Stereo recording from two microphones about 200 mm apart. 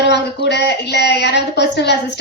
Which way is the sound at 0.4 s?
55° left (ahead or behind).